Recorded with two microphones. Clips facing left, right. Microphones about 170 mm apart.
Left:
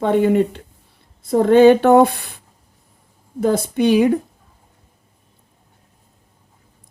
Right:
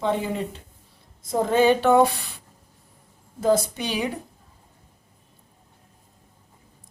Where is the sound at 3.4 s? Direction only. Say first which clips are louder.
Left 5 dB; 55° left (ahead or behind).